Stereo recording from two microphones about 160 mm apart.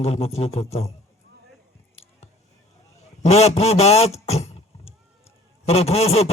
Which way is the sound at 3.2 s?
40° left (ahead or behind).